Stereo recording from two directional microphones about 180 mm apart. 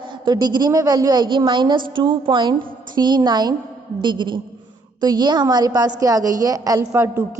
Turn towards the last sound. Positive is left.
turn(degrees=-15)  # may be behind; listen again after turning